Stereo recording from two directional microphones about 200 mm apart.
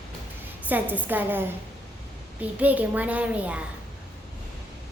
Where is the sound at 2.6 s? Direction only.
10° right (ahead or behind).